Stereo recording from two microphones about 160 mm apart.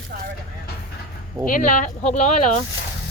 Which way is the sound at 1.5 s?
55° left (ahead or behind).